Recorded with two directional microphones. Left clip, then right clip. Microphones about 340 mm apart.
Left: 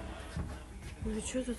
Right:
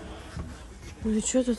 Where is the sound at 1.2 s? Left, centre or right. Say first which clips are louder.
Right 11 dB; centre.